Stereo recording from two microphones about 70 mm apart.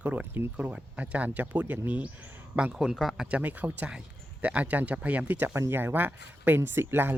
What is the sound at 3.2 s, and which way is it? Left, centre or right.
Speech, right.